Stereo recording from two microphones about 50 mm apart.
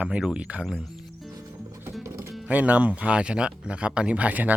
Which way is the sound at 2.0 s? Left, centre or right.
Right.